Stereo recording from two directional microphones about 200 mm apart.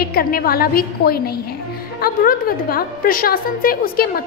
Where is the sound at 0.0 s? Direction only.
50° left (ahead or behind).